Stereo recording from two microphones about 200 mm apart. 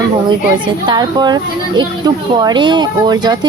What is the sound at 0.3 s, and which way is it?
Speech, 25° right (ahead or behind).